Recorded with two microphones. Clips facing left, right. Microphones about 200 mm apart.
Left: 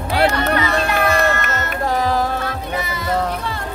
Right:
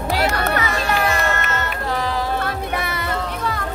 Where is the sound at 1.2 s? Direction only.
45° left (ahead or behind).